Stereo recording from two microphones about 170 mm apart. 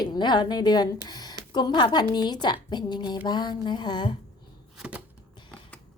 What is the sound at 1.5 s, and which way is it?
A woman's voice, 25° left (ahead or behind).